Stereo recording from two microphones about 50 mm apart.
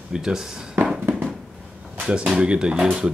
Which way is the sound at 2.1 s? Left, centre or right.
Right.